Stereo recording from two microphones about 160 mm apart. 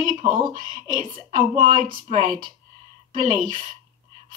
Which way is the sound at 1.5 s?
40° right (ahead or behind).